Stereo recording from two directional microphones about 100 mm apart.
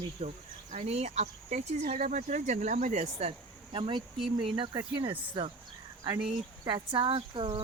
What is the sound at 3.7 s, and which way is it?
Speech, 60° right (ahead or behind).